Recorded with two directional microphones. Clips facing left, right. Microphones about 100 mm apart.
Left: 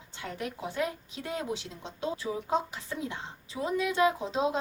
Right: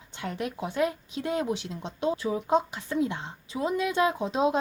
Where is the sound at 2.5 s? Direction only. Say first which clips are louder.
Right 6 dB; 20° right (ahead or behind).